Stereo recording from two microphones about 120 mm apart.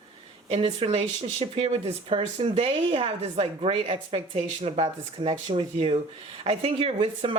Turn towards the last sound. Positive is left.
turn(degrees=-50)  # may be behind; listen again after turning